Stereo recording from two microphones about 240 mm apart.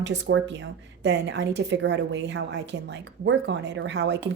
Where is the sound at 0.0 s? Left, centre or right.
Right.